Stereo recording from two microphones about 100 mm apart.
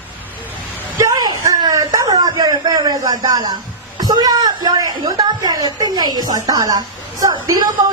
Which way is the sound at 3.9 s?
40° right (ahead or behind).